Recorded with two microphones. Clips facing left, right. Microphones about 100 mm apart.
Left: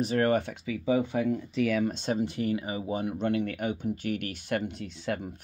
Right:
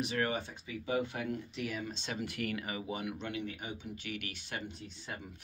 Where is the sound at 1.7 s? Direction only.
80° left.